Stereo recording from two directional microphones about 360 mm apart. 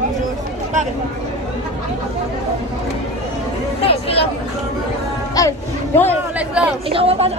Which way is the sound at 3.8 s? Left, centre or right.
Centre.